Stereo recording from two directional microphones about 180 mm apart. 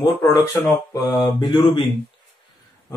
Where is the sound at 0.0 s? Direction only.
20° left (ahead or behind).